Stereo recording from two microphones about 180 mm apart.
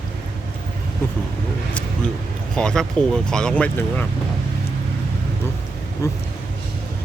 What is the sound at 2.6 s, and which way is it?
Speech, 5° left (ahead or behind).